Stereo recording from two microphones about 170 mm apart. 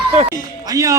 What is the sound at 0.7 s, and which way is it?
Speech, 20° right (ahead or behind).